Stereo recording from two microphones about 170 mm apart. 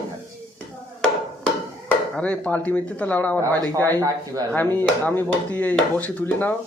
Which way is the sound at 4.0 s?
20° right (ahead or behind).